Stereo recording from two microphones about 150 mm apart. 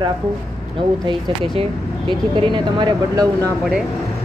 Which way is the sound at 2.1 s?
30° right (ahead or behind).